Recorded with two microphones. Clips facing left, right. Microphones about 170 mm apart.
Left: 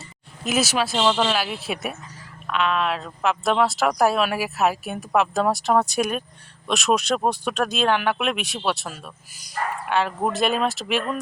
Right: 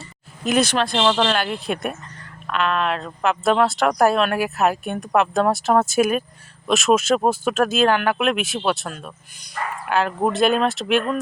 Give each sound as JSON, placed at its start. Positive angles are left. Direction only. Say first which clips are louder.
{"t": 0.4, "sound": "speech", "louder": "right 3 dB", "side_deg": 5}